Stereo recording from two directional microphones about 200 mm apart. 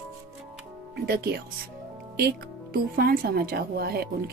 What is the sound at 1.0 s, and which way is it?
Speech, 50° right (ahead or behind).